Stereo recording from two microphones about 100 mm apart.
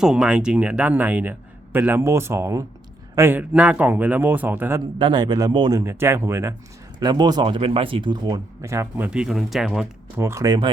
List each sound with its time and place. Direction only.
0.0 s speech: 5° right (ahead or behind); by 3.4 s 25° right (ahead or behind)
3.5 s speech: 15° right (ahead or behind)
4.9 s speech: 50° right (ahead or behind)
5.8 s speech: 25° right (ahead or behind)
7.0 s speech: 45° right (ahead or behind)
8.6 s speech: 30° right (ahead or behind)
9.0 s speech: 10° right (ahead or behind)
10.2 s speech: 25° right (ahead or behind)
10.4 s speech: 40° right (ahead or behind)